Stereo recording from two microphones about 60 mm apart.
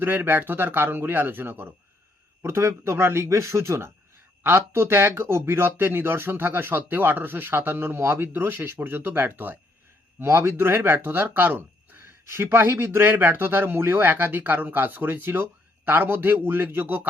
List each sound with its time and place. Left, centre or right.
0.0 s speech: right
2.4 s speech: right
4.4 s speech: right